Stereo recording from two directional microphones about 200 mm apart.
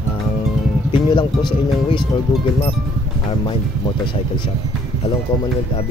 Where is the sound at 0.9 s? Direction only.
25° left (ahead or behind).